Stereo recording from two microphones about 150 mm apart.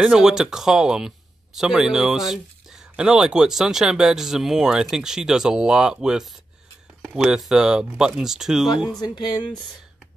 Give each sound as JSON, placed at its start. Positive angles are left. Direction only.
{"t": 0.0, "sound": "speech", "side_deg": -5}
{"t": 9.0, "sound": "speech", "side_deg": 30}